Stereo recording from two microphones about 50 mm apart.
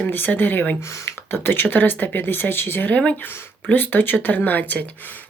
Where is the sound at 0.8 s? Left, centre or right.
Left.